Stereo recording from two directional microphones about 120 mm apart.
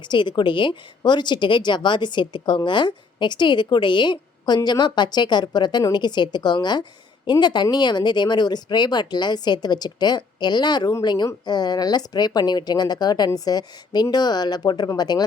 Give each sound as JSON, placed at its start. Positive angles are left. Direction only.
{"t": 0.0, "sound": "a woman's voice", "side_deg": 40}